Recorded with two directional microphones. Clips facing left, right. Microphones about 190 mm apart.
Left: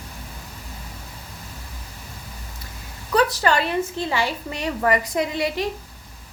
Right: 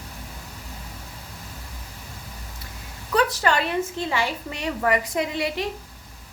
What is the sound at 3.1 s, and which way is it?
A woman's voice, 35° left (ahead or behind).